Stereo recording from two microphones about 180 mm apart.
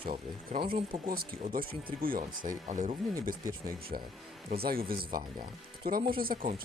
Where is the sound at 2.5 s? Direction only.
40° right (ahead or behind).